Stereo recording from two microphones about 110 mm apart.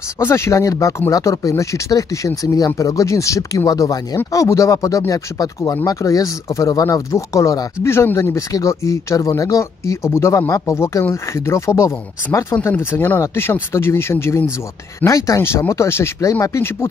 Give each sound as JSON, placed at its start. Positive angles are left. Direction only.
{"t": 0.2, "sound": "speech", "side_deg": 25}